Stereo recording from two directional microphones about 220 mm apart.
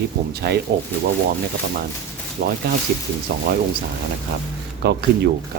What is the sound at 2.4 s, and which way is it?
Speech, 45° right (ahead or behind).